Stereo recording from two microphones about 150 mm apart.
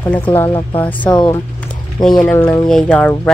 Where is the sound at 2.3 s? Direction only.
20° left (ahead or behind).